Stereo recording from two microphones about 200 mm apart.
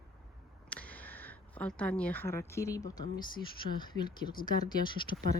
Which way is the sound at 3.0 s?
20° left (ahead or behind).